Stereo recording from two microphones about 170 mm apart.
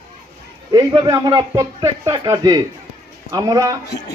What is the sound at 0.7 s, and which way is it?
A man's voice, 25° right (ahead or behind).